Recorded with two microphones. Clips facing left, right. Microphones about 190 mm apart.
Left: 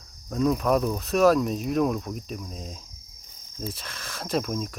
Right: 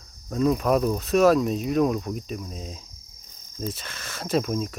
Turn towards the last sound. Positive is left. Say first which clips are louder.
# right 3 dB
turn(degrees=0)  # may be behind; listen again after turning